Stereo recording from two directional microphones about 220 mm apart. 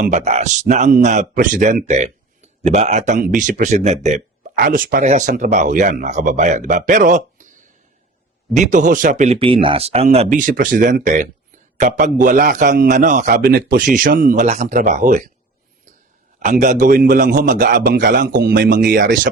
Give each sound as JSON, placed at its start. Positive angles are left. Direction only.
{"t": 0.0, "sound": "a man's voice", "side_deg": -30}
{"t": 16.4, "sound": "a man's voice", "side_deg": -35}